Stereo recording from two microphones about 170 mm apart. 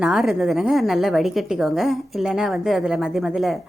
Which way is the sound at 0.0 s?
Centre (ahead or behind).